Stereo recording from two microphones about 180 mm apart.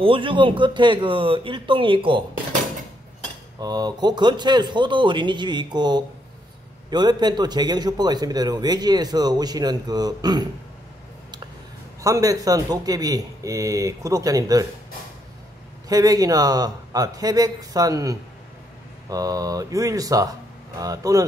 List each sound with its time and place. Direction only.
0.0 s a man's voice: 30° right (ahead or behind)
3.6 s a man's voice: 20° right (ahead or behind)
12.0 s a man's voice: 20° right (ahead or behind)
15.9 s a man's voice: 20° right (ahead or behind)